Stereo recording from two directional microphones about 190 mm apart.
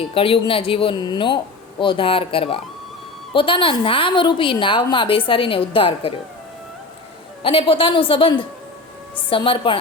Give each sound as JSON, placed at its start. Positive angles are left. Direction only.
{"t": 0.1, "sound": "a woman's voice", "side_deg": 30}
{"t": 7.4, "sound": "a woman's voice", "side_deg": 30}